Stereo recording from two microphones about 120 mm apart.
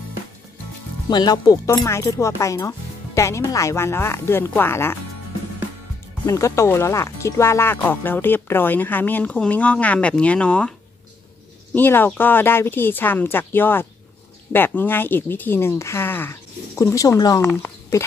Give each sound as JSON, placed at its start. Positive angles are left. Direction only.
{"t": 1.1, "sound": "speech", "side_deg": 35}
{"t": 6.2, "sound": "speech", "side_deg": 25}
{"t": 11.7, "sound": "speech", "side_deg": 15}